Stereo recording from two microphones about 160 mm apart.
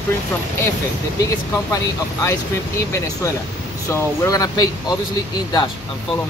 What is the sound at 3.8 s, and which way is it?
Speech, 20° left (ahead or behind).